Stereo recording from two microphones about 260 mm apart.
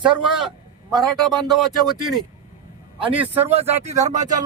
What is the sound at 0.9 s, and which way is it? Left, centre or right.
Speech, centre.